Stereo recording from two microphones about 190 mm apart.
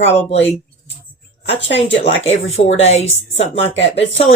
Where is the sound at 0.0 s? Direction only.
35° left (ahead or behind).